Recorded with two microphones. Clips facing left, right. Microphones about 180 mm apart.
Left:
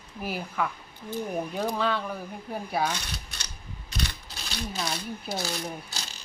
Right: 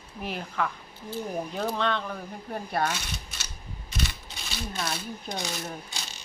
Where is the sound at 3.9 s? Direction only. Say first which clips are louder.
Right 1 dB; centre (ahead or behind).